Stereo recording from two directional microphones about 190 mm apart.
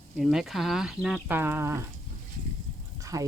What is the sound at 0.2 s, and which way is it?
Speech, centre (ahead or behind).